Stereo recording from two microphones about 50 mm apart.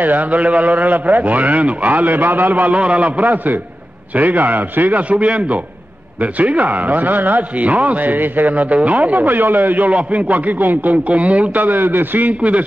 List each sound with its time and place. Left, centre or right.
0.0 s a man's voice: right
12.4 s a man's voice: right